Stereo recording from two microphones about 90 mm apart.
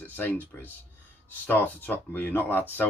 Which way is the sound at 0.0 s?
20° left (ahead or behind).